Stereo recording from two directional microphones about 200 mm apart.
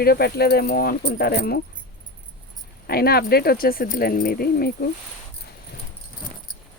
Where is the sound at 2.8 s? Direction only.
50° left (ahead or behind).